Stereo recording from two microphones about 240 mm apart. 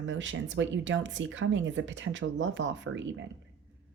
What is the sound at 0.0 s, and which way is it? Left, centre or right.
Speech, right.